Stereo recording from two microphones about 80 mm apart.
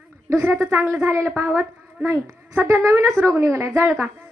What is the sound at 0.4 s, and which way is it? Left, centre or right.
Speech, right.